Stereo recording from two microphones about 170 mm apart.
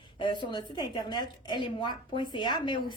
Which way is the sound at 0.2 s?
30° left (ahead or behind).